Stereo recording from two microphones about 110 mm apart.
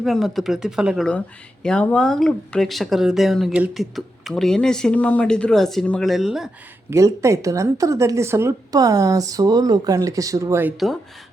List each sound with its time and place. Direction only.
0.0 s speech: centre (ahead or behind)
1.6 s speech: 10° left (ahead or behind)
6.9 s speech: 25° right (ahead or behind)
10.8 s speech: centre (ahead or behind)